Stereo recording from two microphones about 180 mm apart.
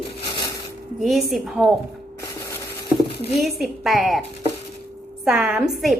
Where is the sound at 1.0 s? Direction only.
Centre (ahead or behind).